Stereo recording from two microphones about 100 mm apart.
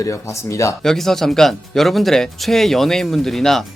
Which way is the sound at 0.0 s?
30° left (ahead or behind).